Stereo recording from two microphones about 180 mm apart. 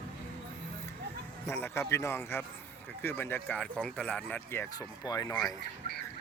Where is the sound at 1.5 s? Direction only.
15° left (ahead or behind).